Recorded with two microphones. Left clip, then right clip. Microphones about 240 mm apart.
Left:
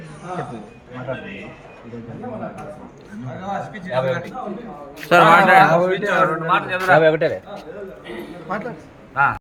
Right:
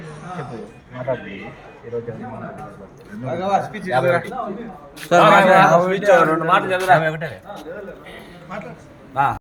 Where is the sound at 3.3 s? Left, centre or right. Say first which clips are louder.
Right 8 dB; right.